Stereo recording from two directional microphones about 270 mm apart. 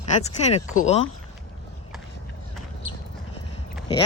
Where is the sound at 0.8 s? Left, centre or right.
Left.